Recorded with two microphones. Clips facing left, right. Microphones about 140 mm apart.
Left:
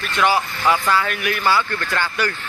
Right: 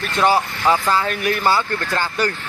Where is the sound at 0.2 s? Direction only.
35° right (ahead or behind).